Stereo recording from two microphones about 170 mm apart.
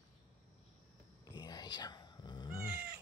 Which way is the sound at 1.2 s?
25° left (ahead or behind).